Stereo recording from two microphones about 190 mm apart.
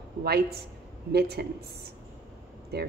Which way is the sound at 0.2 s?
55° right (ahead or behind).